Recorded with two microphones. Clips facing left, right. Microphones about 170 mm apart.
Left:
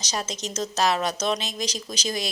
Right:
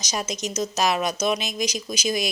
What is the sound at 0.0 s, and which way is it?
Speech, 10° right (ahead or behind).